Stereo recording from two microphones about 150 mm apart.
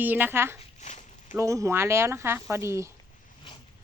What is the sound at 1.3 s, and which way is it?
Speech, 20° right (ahead or behind).